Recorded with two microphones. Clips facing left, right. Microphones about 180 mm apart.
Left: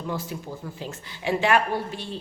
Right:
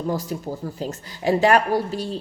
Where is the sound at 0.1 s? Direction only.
40° right (ahead or behind).